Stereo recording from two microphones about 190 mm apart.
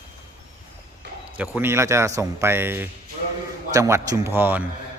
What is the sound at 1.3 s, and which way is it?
A man's voice, 5° right (ahead or behind).